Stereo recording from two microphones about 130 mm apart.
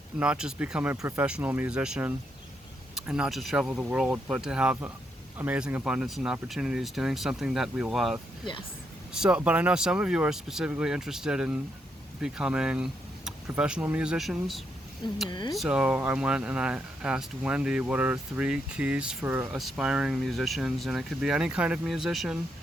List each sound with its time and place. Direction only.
0.2 s speech: 5° right (ahead or behind)
15.3 s speech: 35° left (ahead or behind)
15.5 s speech: 5° right (ahead or behind)